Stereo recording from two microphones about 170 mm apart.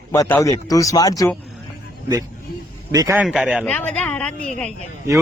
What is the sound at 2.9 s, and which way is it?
Speech, 20° right (ahead or behind).